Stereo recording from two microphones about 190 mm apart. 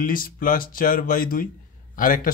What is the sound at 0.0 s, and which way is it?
Speech, 50° left (ahead or behind).